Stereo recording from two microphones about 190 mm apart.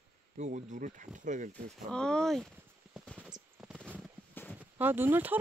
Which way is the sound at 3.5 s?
5° right (ahead or behind).